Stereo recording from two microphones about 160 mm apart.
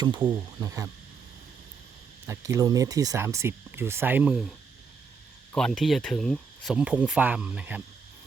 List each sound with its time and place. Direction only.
0.0 s speech: 30° right (ahead or behind)
2.2 s speech: 20° right (ahead or behind)
5.5 s speech: 5° left (ahead or behind)